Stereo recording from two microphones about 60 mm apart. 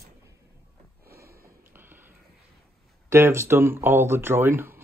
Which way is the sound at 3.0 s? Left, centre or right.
Right.